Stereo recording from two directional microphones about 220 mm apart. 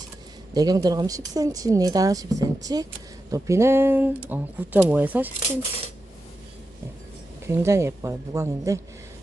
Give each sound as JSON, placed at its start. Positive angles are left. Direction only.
{"t": 0.5, "sound": "speech", "side_deg": -15}
{"t": 7.4, "sound": "speech", "side_deg": -10}